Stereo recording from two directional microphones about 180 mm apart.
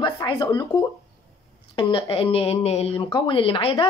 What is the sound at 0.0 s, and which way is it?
Speech, 25° left (ahead or behind).